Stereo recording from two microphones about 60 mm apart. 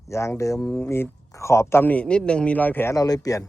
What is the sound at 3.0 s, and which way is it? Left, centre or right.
Speech, left.